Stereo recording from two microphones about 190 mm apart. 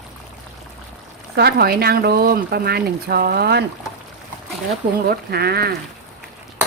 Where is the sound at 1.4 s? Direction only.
55° right (ahead or behind).